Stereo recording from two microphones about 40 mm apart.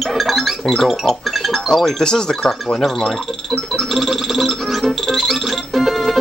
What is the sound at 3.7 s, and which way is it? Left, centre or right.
Music, centre.